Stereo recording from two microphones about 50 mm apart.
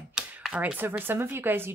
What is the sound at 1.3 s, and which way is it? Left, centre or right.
Speech, right.